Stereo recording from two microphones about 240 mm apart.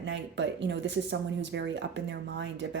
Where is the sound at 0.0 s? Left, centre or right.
Right.